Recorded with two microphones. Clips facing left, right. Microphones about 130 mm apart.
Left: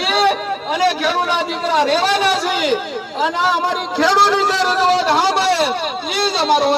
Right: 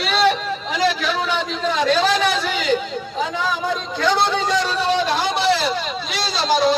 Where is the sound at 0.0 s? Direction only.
55° left (ahead or behind).